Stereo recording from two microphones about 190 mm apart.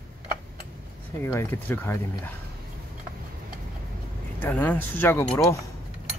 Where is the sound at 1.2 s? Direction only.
10° left (ahead or behind).